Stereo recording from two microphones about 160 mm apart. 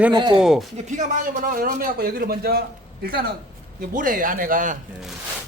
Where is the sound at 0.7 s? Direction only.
55° right (ahead or behind).